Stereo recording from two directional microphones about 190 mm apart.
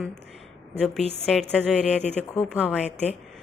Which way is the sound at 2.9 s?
35° left (ahead or behind).